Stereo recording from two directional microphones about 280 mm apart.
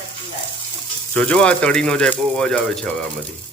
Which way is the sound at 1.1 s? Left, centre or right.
Centre.